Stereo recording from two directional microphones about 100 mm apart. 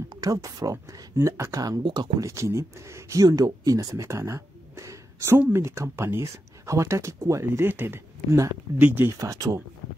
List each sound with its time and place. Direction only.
0.2 s speech: 35° right (ahead or behind)
1.8 s speech: 55° right (ahead or behind)
2.1 s speech: 30° right (ahead or behind)
9.2 s speech: 35° right (ahead or behind)